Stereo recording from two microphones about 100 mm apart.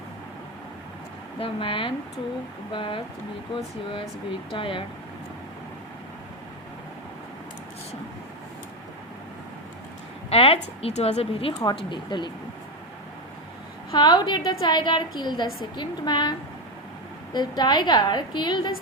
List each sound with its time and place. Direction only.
1.4 s speech: 60° left (ahead or behind)
4.5 s speech: 60° left (ahead or behind)
10.2 s a woman's voice: 75° left (ahead or behind)
11.6 s a woman's voice: 55° left (ahead or behind)
13.9 s a woman's voice: 45° left (ahead or behind)
17.3 s a woman's voice: 45° left (ahead or behind)